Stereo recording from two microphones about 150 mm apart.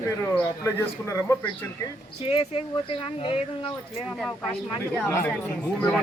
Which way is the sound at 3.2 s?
35° left (ahead or behind).